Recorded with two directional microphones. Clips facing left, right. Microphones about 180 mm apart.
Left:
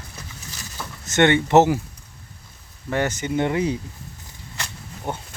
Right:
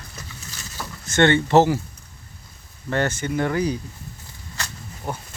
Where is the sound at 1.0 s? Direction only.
20° left (ahead or behind).